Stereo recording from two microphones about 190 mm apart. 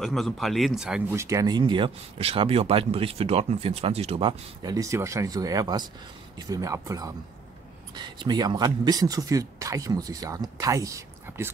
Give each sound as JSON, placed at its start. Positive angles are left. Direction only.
{"t": 0.0, "sound": "speech", "side_deg": 0}
{"t": 1.1, "sound": "speech", "side_deg": -15}